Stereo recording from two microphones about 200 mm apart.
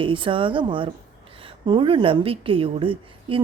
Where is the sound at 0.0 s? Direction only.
25° right (ahead or behind).